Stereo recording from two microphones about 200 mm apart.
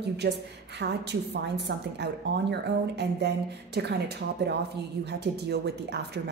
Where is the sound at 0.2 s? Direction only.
55° right (ahead or behind).